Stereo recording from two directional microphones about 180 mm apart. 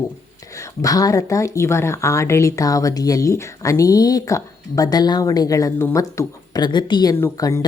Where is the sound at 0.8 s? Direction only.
20° left (ahead or behind).